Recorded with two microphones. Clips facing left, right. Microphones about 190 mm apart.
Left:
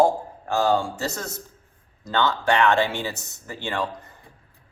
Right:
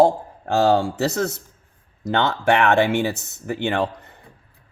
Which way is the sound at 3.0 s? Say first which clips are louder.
Right 7 dB; 20° right (ahead or behind).